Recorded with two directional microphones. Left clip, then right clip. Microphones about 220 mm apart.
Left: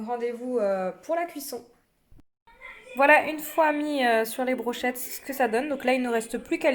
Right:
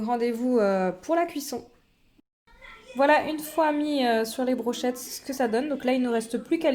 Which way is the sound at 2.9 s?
Centre (ahead or behind).